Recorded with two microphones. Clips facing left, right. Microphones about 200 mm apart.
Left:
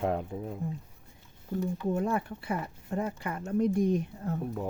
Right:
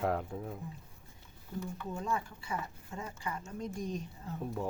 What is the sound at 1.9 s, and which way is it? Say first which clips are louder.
Speech: left 7 dB; 60° left (ahead or behind).